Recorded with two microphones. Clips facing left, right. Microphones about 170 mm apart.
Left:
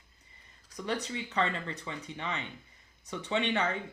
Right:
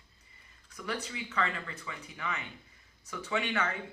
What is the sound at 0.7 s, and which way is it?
Speech, 35° left (ahead or behind).